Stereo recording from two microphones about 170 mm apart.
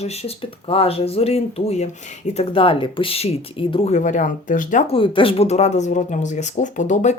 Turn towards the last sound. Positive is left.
turn(degrees=45)  # may be behind; listen again after turning